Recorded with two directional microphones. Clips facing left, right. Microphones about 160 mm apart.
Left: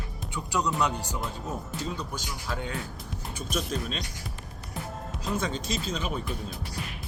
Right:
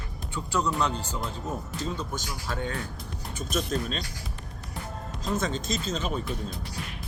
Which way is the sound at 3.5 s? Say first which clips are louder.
Right 2 dB; 5° left (ahead or behind).